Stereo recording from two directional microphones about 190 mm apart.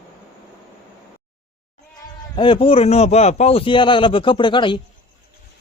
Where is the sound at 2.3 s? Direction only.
25° left (ahead or behind).